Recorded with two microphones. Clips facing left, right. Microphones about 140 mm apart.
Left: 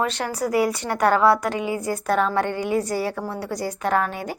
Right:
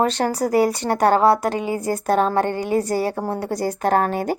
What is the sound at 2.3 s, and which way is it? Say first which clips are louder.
Speech: right 2 dB; 40° right (ahead or behind).